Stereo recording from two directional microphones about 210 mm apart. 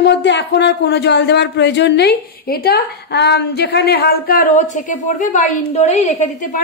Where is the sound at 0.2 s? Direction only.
55° left (ahead or behind).